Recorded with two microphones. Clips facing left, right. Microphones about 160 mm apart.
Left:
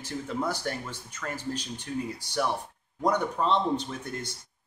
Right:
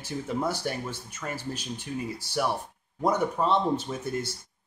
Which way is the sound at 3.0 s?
5° right (ahead or behind).